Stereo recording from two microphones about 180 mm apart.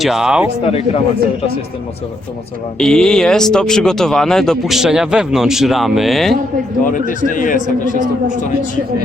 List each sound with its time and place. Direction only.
0.0 s speech: centre (ahead or behind)
0.6 s speech: 35° left (ahead or behind)
2.7 s speech: 5° left (ahead or behind)
6.8 s a man's voice: 50° left (ahead or behind)